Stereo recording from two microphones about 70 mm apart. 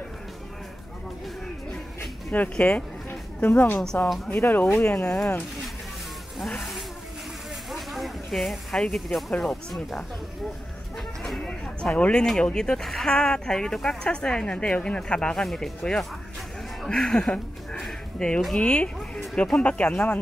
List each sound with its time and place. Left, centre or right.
2.3 s speech: left
3.7 s speech: centre
4.4 s speech: left
5.0 s speech: centre
7.7 s snake: centre
9.4 s speech: centre
11.2 s a sound: centre
11.6 s speech: centre
18.5 s speech: centre